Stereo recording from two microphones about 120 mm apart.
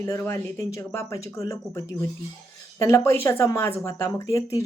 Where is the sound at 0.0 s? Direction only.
20° left (ahead or behind).